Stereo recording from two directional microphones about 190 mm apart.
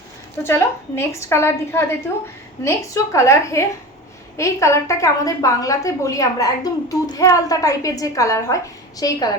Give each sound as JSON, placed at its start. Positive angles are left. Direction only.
{"t": 0.4, "sound": "a woman's voice", "side_deg": 15}